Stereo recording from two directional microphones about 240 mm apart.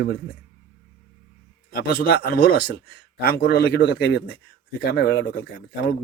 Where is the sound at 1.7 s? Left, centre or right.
Left.